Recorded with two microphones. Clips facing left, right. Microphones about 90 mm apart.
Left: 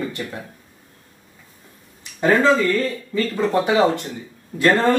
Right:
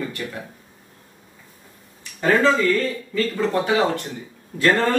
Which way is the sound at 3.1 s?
20° left (ahead or behind).